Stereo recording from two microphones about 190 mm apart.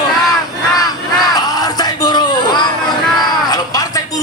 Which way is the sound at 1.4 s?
20° left (ahead or behind).